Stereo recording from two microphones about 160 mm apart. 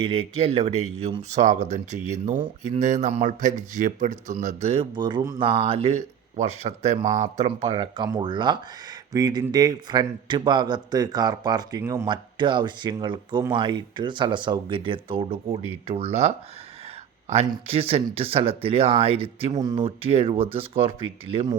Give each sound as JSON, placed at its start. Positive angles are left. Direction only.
{"t": 0.0, "sound": "a man's voice", "side_deg": -35}
{"t": 12.0, "sound": "a man's voice", "side_deg": -30}
{"t": 19.5, "sound": "a man's voice", "side_deg": -25}
{"t": 19.8, "sound": "speech", "side_deg": -40}